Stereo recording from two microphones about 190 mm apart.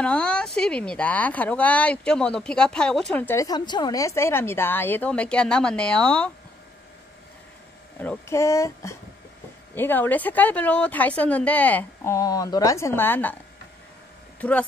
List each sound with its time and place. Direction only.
0.0 s speech: 5° left (ahead or behind)
8.0 s speech: 10° left (ahead or behind)